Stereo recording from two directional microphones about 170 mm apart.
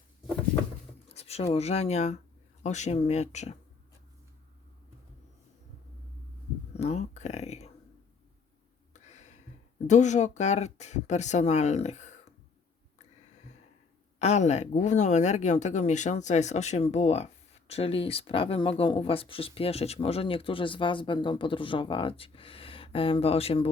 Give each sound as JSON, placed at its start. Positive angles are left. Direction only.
{"t": 1.1, "sound": "speech", "side_deg": 40}
{"t": 6.7, "sound": "speech", "side_deg": 40}
{"t": 8.9, "sound": "a sound", "side_deg": 40}
{"t": 9.8, "sound": "speech", "side_deg": 45}
{"t": 14.2, "sound": "speech", "side_deg": 40}